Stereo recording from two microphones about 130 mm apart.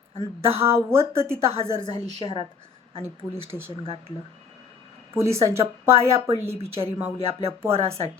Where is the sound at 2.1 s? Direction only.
35° left (ahead or behind).